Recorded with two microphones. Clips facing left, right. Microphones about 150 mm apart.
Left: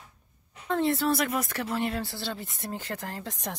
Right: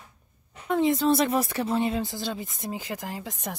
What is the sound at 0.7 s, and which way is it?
Speech, 15° right (ahead or behind).